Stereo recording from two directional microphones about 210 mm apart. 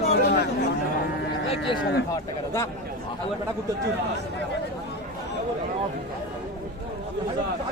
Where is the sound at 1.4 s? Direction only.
30° left (ahead or behind).